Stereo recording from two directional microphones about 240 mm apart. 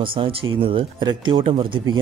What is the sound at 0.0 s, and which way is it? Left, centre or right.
A man's voice, right.